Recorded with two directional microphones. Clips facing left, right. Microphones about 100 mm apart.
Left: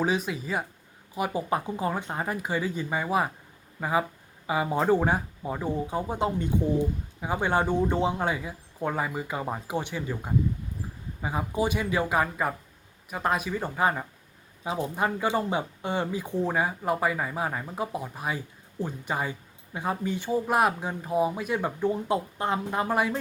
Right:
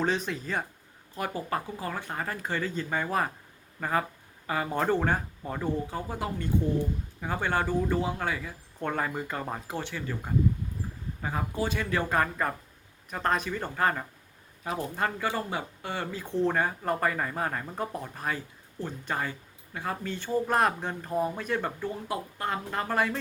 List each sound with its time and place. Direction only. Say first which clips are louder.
0.0 s speech: left 2 dB; 10° left (ahead or behind)
8.8 s speech: left 1 dB; 5° left (ahead or behind)